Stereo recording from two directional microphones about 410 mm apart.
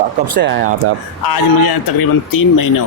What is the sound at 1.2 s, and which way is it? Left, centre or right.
A man's voice, left.